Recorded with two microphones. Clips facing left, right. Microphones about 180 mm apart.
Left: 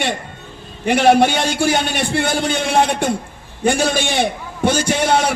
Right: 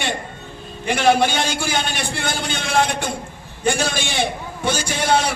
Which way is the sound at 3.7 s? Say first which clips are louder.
Left 5 dB; 60° left (ahead or behind).